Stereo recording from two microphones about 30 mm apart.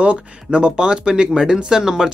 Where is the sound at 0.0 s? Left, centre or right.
Right.